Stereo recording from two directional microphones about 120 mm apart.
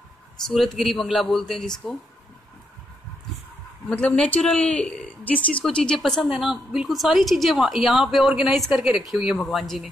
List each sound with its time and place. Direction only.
0.5 s speech: centre (ahead or behind)
3.9 s speech: 10° left (ahead or behind)